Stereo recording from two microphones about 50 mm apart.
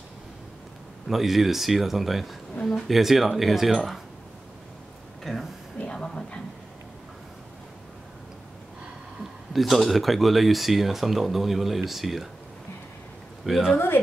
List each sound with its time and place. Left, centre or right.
1.0 s speech: centre
5.2 s speech: centre
5.8 s a sound: left
9.5 s speech: centre
13.5 s speech: centre